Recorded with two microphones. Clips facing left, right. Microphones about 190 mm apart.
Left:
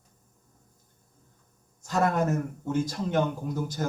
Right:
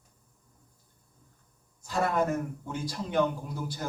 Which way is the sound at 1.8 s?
45° left (ahead or behind).